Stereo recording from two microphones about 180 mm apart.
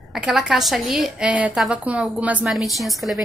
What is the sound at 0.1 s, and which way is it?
A woman's voice, 5° right (ahead or behind).